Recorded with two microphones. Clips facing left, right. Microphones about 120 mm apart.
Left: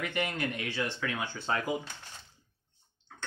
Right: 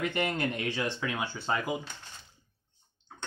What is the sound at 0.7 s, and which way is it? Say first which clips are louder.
Speech: right 2 dB; 20° right (ahead or behind).